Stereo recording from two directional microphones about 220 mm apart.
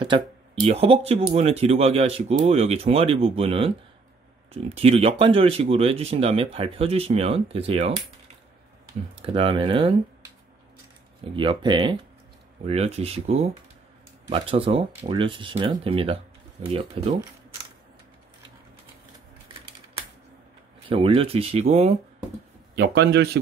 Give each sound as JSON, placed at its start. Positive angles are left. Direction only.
{"t": 0.1, "sound": "speech", "side_deg": -25}
{"t": 9.1, "sound": "speech", "side_deg": -25}
{"t": 11.3, "sound": "speech", "side_deg": -20}
{"t": 20.9, "sound": "speech", "side_deg": -25}
{"t": 22.8, "sound": "a man's voice", "side_deg": -50}